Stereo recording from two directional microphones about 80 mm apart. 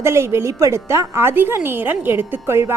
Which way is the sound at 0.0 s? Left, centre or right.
Right.